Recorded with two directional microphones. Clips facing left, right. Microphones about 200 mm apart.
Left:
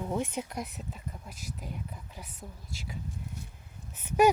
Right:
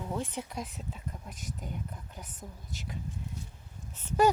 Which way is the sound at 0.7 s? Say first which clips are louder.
Even; 5° left (ahead or behind).